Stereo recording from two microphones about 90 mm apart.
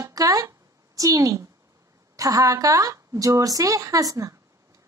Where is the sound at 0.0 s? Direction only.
40° right (ahead or behind).